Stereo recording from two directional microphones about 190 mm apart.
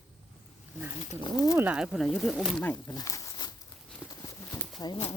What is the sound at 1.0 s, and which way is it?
Speech, 35° left (ahead or behind).